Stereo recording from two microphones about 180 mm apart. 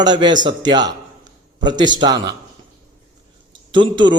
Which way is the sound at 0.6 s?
25° right (ahead or behind).